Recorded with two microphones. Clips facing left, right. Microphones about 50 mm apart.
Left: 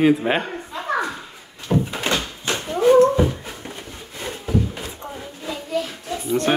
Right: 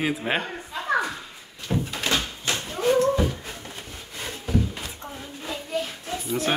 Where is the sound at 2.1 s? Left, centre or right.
Left.